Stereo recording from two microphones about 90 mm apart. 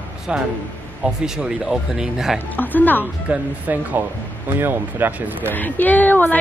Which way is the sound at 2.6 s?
20° left (ahead or behind).